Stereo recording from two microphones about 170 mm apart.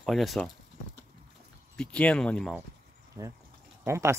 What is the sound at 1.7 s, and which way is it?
Speech, 5° left (ahead or behind).